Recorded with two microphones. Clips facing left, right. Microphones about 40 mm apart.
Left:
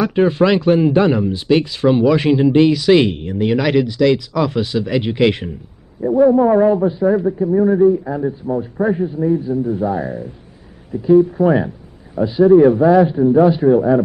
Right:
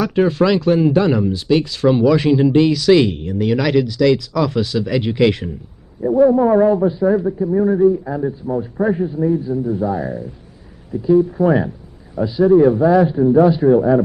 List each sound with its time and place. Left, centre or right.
0.0 s speech: centre
6.0 s a man's voice: centre
11.2 s a man's voice: centre
12.3 s a man's voice: centre
13.7 s a man's voice: centre